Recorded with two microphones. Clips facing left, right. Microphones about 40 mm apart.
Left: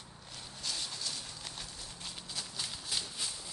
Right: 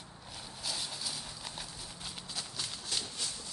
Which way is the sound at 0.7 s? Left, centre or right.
Centre.